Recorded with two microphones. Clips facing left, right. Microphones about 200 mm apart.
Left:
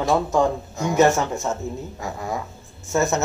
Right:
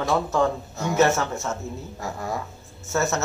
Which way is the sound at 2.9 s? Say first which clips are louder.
Left 3 dB; 15° left (ahead or behind).